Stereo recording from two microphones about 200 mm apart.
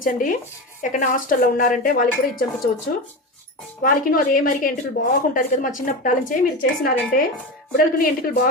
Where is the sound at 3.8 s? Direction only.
45° left (ahead or behind).